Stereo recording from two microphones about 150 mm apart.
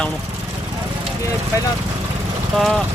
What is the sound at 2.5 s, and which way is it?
Speech, centre (ahead or behind).